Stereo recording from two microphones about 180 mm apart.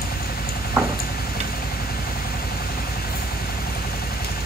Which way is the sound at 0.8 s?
15° right (ahead or behind).